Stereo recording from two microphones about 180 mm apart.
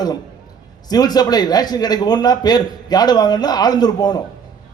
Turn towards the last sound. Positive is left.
turn(degrees=20)  # may be behind; listen again after turning